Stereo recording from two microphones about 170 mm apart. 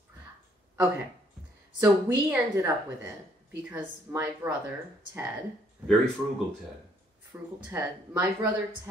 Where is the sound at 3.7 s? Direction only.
10° right (ahead or behind).